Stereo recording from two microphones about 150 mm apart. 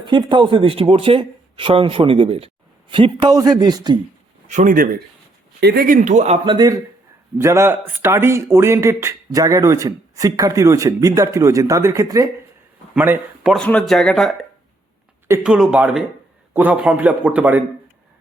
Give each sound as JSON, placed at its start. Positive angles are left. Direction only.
{"t": 0.0, "sound": "speech", "side_deg": -30}
{"t": 4.4, "sound": "a man's voice", "side_deg": -60}
{"t": 5.5, "sound": "a man's voice", "side_deg": -90}
{"t": 6.4, "sound": "speech", "side_deg": -30}
{"t": 12.9, "sound": "speech", "side_deg": -10}
{"t": 13.5, "sound": "speech", "side_deg": 5}
{"t": 15.4, "sound": "a man's voice", "side_deg": -5}